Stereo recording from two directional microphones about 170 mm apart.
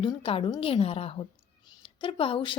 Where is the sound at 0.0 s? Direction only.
30° left (ahead or behind).